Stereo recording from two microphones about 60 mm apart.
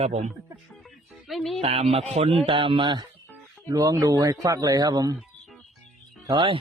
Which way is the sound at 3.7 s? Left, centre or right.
Right.